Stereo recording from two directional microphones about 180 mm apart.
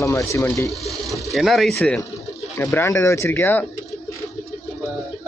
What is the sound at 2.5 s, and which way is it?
Speech, 15° left (ahead or behind).